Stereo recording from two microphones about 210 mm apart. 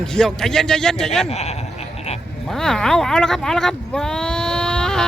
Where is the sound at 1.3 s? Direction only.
30° left (ahead or behind).